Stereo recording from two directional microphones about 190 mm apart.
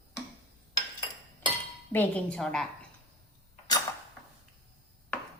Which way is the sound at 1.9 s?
5° left (ahead or behind).